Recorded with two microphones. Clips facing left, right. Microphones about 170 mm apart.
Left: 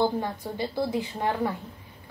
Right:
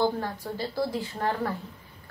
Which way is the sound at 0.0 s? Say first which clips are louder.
Left 1 dB; 20° left (ahead or behind).